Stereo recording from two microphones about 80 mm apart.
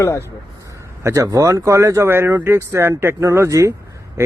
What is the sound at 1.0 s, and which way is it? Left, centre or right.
Speech, right.